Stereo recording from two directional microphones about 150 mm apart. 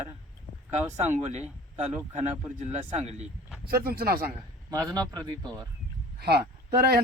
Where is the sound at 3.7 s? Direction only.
85° right.